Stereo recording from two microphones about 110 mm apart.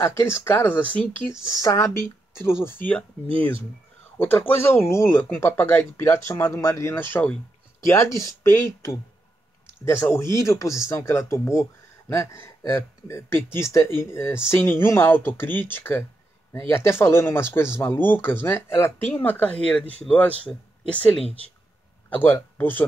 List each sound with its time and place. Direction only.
0.0 s speech: 25° left (ahead or behind)
1.3 s speech: 30° left (ahead or behind)
4.2 s speech: 15° left (ahead or behind)
7.9 s speech: 30° left (ahead or behind)